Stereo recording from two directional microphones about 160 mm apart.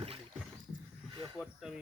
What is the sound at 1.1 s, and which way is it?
Speech, 30° right (ahead or behind).